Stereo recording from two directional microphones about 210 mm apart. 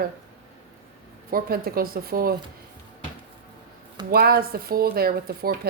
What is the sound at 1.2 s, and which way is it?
Speech, 45° right (ahead or behind).